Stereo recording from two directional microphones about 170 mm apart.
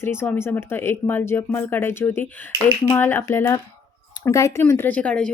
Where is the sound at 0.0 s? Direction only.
15° left (ahead or behind).